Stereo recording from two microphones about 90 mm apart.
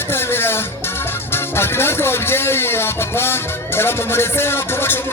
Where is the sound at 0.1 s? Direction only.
25° left (ahead or behind).